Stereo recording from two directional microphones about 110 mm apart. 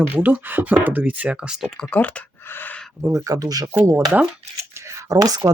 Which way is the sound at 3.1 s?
30° right (ahead or behind).